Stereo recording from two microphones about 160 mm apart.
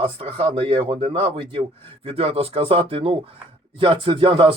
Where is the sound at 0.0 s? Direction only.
35° right (ahead or behind).